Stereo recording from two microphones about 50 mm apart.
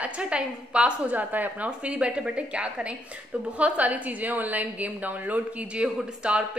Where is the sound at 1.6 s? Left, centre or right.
Right.